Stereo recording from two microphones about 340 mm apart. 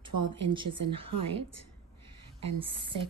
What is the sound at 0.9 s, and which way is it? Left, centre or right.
A woman's voice, centre.